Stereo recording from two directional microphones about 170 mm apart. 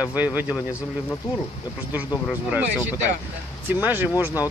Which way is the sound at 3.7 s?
10° right (ahead or behind).